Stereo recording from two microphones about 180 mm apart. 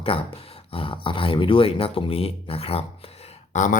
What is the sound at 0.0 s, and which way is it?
Speech, 30° left (ahead or behind).